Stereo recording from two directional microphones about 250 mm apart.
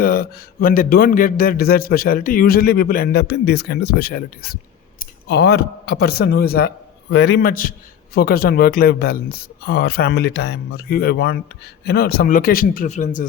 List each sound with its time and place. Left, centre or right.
0.0 s a man's voice: left